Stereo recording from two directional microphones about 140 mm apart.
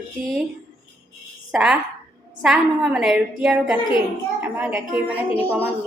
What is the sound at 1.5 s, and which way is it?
A woman's voice, 5° right (ahead or behind).